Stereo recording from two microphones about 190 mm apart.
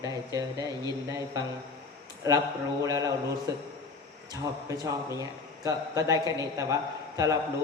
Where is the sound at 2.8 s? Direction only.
20° right (ahead or behind).